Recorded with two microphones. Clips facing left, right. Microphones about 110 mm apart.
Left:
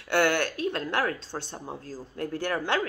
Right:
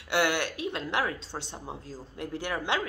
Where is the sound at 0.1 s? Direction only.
15° right (ahead or behind).